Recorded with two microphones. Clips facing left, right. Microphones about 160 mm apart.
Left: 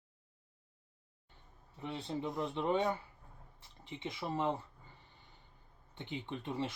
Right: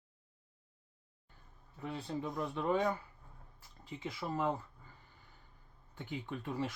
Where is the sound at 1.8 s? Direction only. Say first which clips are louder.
Even; 25° left (ahead or behind).